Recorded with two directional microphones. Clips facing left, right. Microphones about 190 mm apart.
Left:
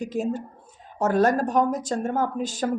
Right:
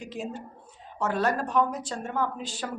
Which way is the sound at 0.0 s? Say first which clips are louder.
Left 9 dB; 45° left (ahead or behind).